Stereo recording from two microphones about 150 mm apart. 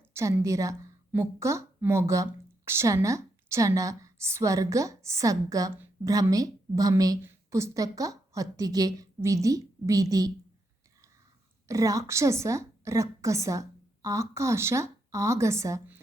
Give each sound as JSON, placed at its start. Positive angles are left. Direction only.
{"t": 0.1, "sound": "a woman's voice", "side_deg": -20}
{"t": 11.7, "sound": "a woman's voice", "side_deg": -20}